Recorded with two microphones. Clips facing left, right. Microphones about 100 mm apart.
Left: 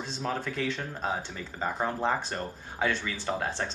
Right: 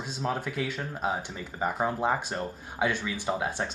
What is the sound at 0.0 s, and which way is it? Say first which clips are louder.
Speech: right 1 dB; 10° right (ahead or behind).